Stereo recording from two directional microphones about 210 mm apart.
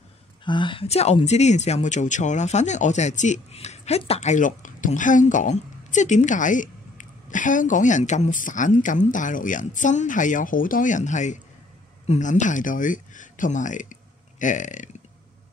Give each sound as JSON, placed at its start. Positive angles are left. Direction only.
{"t": 0.5, "sound": "speech", "side_deg": 25}